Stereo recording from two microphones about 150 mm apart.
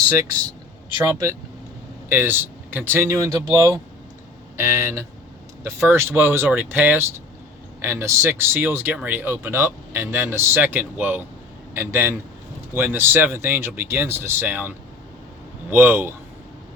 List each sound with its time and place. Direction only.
0.1 s speech: 20° right (ahead or behind)